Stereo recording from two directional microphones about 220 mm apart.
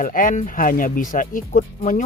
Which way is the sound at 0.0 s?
35° left (ahead or behind).